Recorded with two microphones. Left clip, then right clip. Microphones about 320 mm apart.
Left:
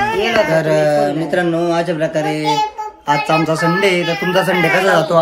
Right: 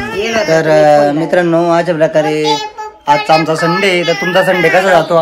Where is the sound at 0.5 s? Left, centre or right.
Centre.